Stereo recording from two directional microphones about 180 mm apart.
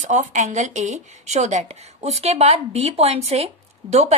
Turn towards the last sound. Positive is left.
turn(degrees=-35)  # may be behind; listen again after turning